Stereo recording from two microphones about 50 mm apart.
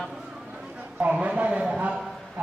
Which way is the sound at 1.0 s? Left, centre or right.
Right.